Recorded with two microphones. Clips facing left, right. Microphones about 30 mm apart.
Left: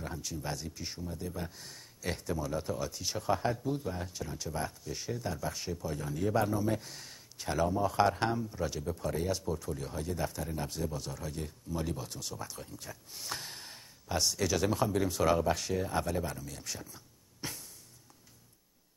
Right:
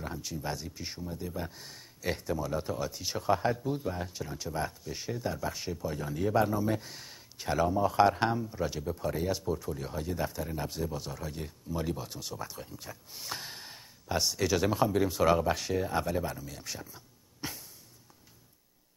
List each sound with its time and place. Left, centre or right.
0.0 s speech: centre